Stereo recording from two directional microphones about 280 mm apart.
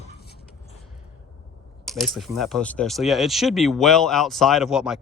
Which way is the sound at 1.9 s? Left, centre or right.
Centre.